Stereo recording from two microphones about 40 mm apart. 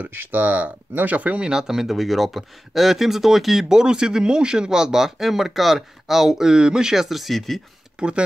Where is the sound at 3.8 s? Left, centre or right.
Centre.